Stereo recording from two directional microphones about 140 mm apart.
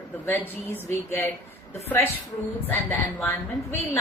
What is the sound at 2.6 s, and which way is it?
A woman's voice, 15° left (ahead or behind).